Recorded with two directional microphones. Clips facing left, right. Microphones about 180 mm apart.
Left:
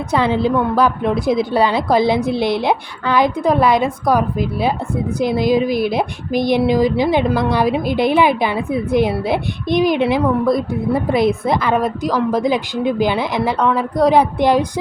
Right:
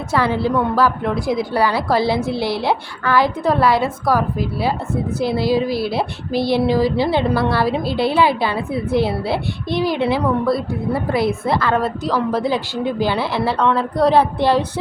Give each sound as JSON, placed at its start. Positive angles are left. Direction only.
{"t": 0.1, "sound": "a woman's voice", "side_deg": 20}